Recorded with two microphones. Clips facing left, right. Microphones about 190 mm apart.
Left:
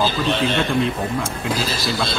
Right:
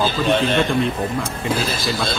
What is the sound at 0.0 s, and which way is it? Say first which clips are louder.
Speech: right 2 dB; 50° right (ahead or behind).